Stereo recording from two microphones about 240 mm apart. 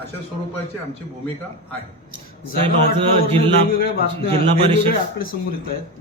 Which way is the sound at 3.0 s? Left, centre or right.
Right.